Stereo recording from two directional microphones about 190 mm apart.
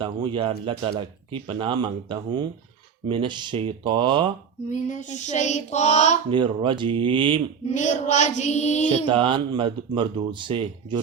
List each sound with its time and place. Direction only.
0.0 s speech: 25° right (ahead or behind)
4.7 s child singing: 40° left (ahead or behind)
6.3 s speech: 25° right (ahead or behind)
7.7 s child singing: 40° left (ahead or behind)
9.0 s speech: 25° right (ahead or behind)